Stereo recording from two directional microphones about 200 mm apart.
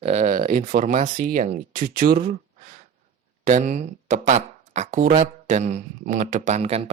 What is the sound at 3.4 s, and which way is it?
Speech, 40° right (ahead or behind).